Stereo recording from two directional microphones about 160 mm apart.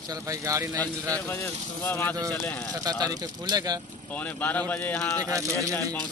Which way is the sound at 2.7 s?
25° right (ahead or behind).